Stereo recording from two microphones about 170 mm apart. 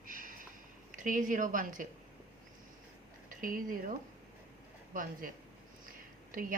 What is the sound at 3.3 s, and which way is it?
Speech, 55° right (ahead or behind).